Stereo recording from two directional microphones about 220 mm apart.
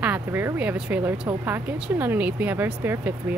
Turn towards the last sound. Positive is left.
turn(degrees=-10)  # may be behind; listen again after turning